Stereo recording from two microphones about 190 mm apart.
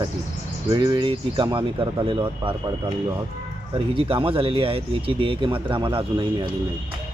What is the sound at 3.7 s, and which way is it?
Speech, 30° right (ahead or behind).